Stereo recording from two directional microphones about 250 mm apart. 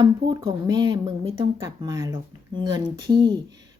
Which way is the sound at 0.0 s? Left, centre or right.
Centre.